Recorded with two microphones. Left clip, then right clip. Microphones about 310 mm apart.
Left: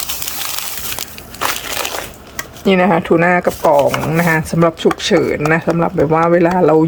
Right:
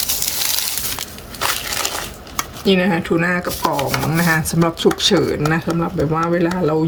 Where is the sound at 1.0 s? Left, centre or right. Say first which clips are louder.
Left 5 dB; left.